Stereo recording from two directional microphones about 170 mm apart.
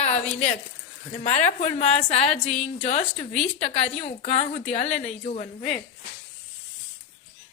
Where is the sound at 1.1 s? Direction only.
40° left (ahead or behind).